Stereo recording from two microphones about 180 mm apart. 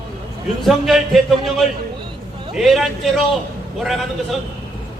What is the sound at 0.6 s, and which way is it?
Speech, centre (ahead or behind).